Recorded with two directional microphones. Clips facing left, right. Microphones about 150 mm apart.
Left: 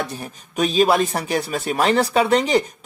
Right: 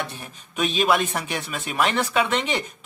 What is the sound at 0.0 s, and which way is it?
Speech, 40° left (ahead or behind).